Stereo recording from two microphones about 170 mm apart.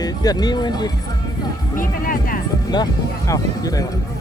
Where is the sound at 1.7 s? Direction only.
55° left (ahead or behind).